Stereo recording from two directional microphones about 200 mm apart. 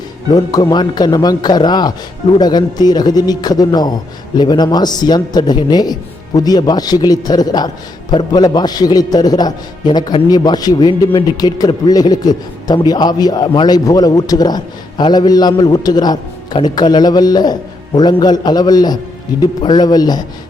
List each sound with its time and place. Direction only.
0.3 s a man's voice: 20° left (ahead or behind)